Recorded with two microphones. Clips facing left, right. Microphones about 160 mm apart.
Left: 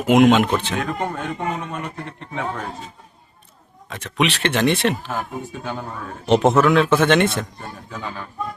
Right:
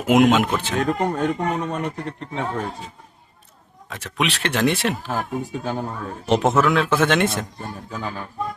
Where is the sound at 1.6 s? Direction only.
35° right (ahead or behind).